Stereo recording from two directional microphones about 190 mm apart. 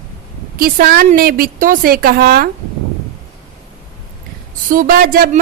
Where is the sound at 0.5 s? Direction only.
55° right (ahead or behind).